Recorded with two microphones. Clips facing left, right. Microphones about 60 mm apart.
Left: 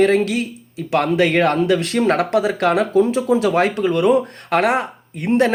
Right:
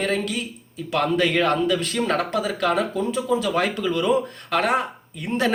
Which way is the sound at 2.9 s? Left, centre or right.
Left.